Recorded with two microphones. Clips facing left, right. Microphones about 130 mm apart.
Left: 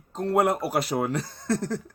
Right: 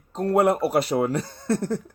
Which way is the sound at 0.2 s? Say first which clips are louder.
Right 3 dB; 35° right (ahead or behind).